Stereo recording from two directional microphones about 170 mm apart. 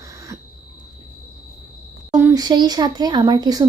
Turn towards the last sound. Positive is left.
turn(degrees=-25)  # may be behind; listen again after turning